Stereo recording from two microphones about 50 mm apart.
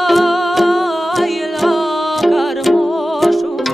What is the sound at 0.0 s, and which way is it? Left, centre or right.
Music, centre.